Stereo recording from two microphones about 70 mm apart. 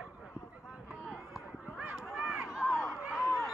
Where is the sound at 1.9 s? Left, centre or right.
Centre.